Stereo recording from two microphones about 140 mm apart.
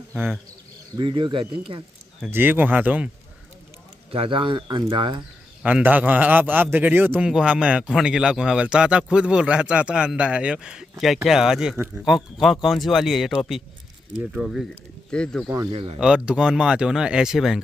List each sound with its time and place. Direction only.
0.9 s speech: 35° right (ahead or behind)
2.3 s a man's voice: 15° right (ahead or behind)
4.1 s speech: 40° right (ahead or behind)
5.6 s a man's voice: 10° right (ahead or behind)
11.7 s a man's voice: 15° right (ahead or behind)
12.0 s speech: centre (ahead or behind)
15.7 s speech: 35° right (ahead or behind)
16.0 s speech: 5° right (ahead or behind)